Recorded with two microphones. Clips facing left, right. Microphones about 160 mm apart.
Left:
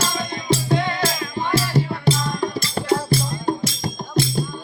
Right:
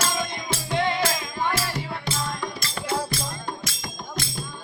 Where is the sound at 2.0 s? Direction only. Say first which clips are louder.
Left 8 dB; 35° left (ahead or behind).